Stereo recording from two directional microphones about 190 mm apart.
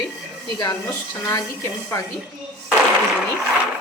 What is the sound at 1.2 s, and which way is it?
Speech, 15° left (ahead or behind).